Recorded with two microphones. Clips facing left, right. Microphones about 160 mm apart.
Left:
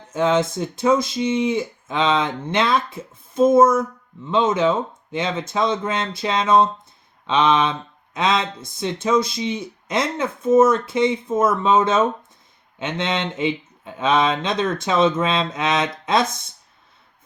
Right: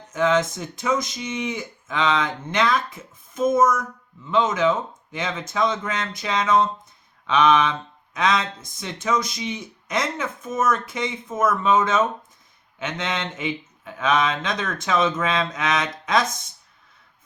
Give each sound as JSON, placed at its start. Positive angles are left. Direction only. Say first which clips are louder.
{"t": 0.1, "sound": "speech", "louder": "left 2 dB", "side_deg": 30}